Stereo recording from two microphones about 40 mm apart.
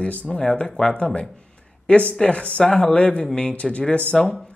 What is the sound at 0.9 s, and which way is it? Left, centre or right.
Speech, left.